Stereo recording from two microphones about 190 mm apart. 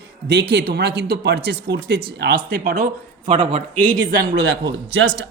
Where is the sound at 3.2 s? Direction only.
30° right (ahead or behind).